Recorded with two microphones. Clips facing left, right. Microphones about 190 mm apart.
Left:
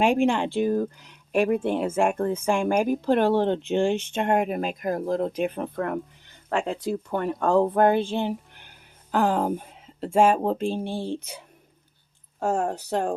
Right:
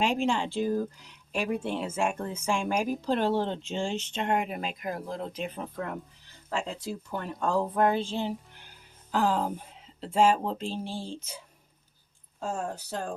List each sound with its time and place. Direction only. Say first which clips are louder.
0.0 s speech: left 6 dB; 55° left (ahead or behind)